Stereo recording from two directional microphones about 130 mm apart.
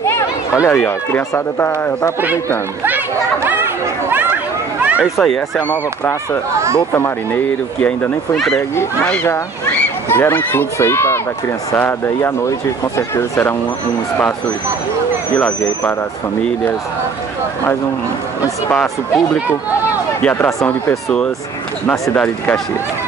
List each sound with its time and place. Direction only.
0.0 s speech: 20° left (ahead or behind)
3.4 s chatter: 15° right (ahead or behind)
4.8 s a sound: 10° right (ahead or behind)
5.2 s speech: 5° left (ahead or behind)
6.9 s speech: 15° left (ahead or behind)
15.3 s speech: 10° left (ahead or behind)
18.8 s speech: 10° left (ahead or behind)
20.9 s speech: 10° left (ahead or behind)